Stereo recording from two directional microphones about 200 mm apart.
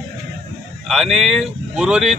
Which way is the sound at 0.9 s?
Centre (ahead or behind).